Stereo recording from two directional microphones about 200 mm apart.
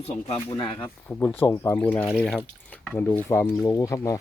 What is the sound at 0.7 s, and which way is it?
Speech, 10° left (ahead or behind).